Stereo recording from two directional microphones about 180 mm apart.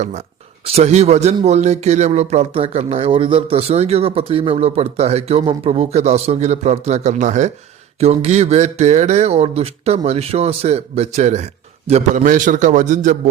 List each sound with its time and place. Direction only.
0.6 s a man's voice: 35° right (ahead or behind)